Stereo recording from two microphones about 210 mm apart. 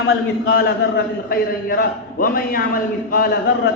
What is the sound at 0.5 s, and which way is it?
A man's voice, 50° left (ahead or behind).